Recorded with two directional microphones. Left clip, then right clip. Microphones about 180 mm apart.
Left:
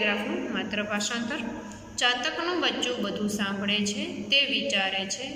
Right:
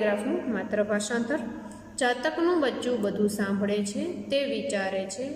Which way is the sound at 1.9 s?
50° right (ahead or behind).